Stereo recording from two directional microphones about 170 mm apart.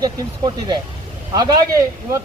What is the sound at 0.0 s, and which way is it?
Speech, 25° right (ahead or behind).